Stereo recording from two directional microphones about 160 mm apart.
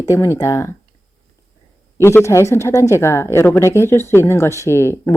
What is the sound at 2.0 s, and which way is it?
Speech, 15° left (ahead or behind).